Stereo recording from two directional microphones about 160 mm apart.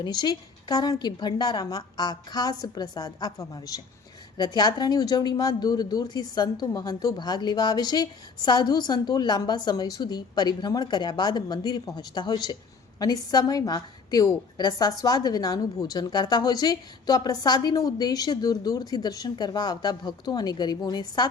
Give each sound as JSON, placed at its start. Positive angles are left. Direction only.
{"t": 0.0, "sound": "a woman's voice", "side_deg": 25}